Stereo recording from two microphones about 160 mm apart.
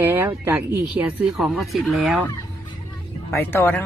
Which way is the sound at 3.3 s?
15° left (ahead or behind).